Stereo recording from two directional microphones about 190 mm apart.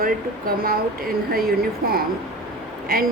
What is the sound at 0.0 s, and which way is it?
A woman's voice, 50° right (ahead or behind).